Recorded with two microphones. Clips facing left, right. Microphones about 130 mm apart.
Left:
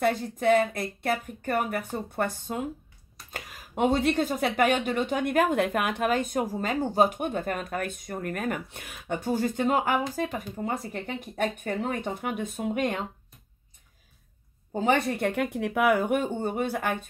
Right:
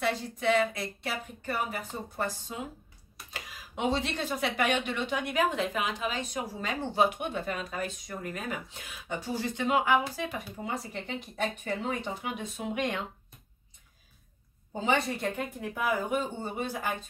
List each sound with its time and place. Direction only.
0.0 s speech: 50° left (ahead or behind)
14.8 s speech: 55° left (ahead or behind)